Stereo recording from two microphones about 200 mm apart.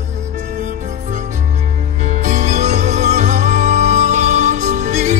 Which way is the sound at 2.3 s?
35° right (ahead or behind).